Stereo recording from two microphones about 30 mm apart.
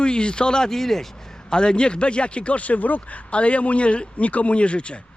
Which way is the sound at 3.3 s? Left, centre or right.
Left.